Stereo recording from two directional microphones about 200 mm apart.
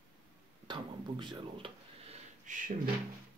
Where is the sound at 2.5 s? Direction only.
40° right (ahead or behind).